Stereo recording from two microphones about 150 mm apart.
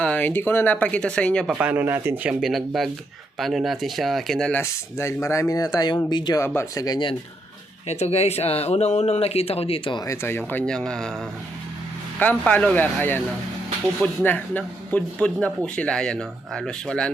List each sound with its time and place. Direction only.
0.0 s speech: 10° left (ahead or behind)
1.5 s speech: 10° right (ahead or behind); by 4.6 s 5° left (ahead or behind)
4.6 s speech: 20° left (ahead or behind)
6.4 s speech: 15° left (ahead or behind)
7.9 s speech: 45° left (ahead or behind); by 11.1 s 5° left (ahead or behind)
12.2 s speech: 10° left (ahead or behind)
14.3 s speech: 10° left (ahead or behind)